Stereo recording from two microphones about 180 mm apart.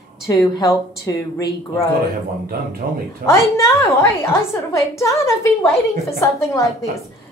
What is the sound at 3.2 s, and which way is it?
A woman's voice, 15° left (ahead or behind).